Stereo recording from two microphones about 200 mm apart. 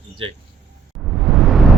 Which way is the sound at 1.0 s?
Centre (ahead or behind).